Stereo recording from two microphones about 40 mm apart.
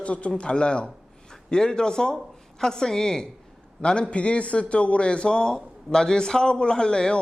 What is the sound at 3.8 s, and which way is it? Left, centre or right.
A man's voice, left.